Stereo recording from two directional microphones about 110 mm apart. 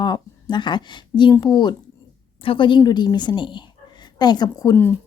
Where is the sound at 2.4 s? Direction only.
50° left (ahead or behind).